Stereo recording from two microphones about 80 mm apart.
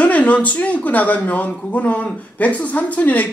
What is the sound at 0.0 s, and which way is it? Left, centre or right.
A woman's voice, centre.